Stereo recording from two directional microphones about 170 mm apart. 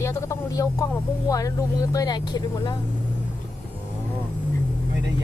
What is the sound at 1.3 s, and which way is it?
Speech, 20° left (ahead or behind).